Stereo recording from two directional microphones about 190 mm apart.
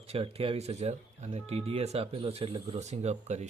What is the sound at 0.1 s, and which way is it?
Speech, 30° right (ahead or behind).